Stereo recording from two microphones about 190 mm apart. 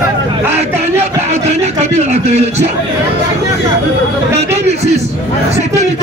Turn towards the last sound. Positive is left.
turn(degrees=-35)  # may be behind; listen again after turning